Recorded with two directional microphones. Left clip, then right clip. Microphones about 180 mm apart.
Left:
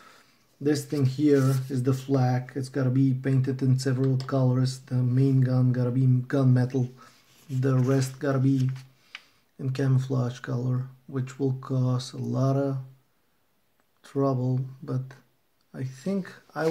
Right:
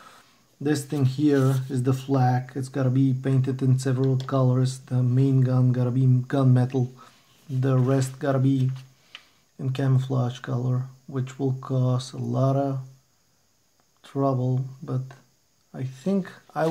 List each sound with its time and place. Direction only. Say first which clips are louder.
0.7 s speech: even; 35° right (ahead or behind)
9.6 s speech: right 1 dB; 25° right (ahead or behind)
14.0 s speech: right 1 dB; 20° right (ahead or behind)